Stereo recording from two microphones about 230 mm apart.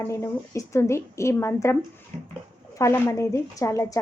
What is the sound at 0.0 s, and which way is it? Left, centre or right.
A woman's voice, centre.